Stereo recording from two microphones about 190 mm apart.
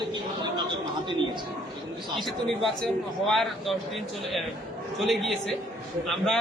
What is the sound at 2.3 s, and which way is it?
A man's voice, centre (ahead or behind).